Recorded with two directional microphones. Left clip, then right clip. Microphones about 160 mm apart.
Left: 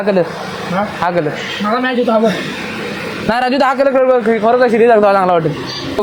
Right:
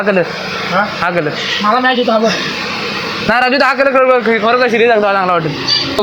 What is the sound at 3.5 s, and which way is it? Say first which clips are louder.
A man's voice: right 1 dB; 15° left (ahead or behind).